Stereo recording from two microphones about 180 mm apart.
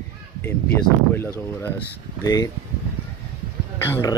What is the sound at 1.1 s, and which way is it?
Speech, 15° left (ahead or behind).